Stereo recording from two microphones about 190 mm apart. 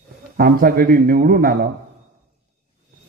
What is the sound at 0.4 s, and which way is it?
A man's voice, 50° right (ahead or behind).